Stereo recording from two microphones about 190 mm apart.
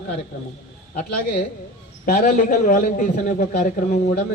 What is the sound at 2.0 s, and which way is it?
A man's voice, 45° left (ahead or behind).